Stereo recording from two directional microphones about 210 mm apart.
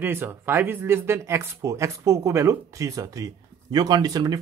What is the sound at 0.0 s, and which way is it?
Speech, 10° right (ahead or behind).